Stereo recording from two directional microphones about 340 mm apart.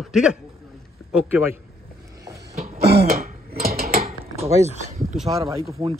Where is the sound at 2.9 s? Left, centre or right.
Right.